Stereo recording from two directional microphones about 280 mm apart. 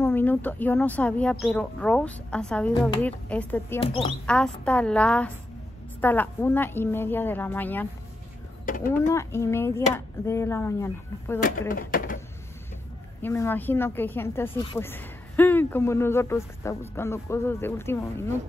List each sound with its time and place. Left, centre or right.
0.0 s speech: centre
3.8 s speech: centre
4.3 s speech: centre
8.6 s speech: left
8.9 s speech: centre
11.7 s a sound: left
13.2 s speech: centre